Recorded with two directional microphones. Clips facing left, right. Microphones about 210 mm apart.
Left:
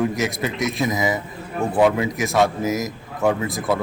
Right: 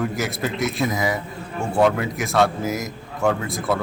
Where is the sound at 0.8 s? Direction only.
20° left (ahead or behind).